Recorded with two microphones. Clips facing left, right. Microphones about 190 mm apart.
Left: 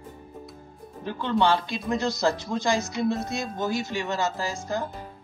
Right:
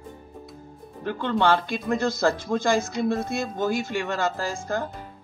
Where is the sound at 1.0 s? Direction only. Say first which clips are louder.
Right 1 dB; 50° right (ahead or behind).